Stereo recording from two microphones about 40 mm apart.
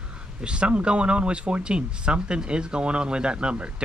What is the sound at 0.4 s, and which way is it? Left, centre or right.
Speech, right.